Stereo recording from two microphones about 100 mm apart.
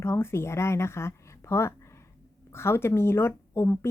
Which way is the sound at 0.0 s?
25° left (ahead or behind).